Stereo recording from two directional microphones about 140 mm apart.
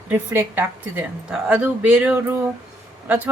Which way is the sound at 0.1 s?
15° right (ahead or behind).